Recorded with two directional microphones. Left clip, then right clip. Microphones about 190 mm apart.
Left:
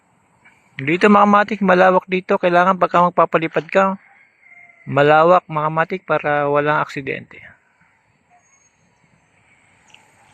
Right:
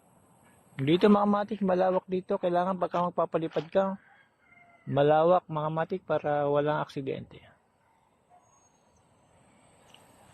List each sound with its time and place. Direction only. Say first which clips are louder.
0.9 s speech: left 11 dB; 15° left (ahead or behind)
4.9 s speech: left 11 dB; 15° left (ahead or behind)